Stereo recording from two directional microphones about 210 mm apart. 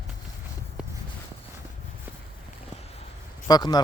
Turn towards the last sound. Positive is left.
turn(degrees=20)  # may be behind; listen again after turning